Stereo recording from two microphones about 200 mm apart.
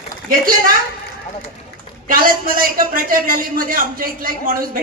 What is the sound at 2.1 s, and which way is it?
A man's voice, 45° right (ahead or behind).